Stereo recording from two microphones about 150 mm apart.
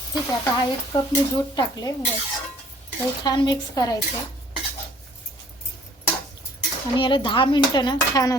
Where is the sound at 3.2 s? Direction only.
30° left (ahead or behind).